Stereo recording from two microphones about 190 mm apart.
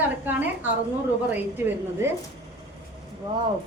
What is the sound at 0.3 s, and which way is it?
A woman's voice, 10° right (ahead or behind).